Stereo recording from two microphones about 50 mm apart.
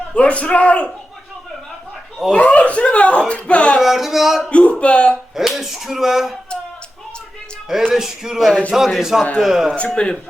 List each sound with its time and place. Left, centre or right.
0.1 s speech: left
2.3 s speech: left
3.8 s a sound: centre
4.4 s speech: left
5.3 s speech: centre
7.9 s speech: centre
9.7 s speech: left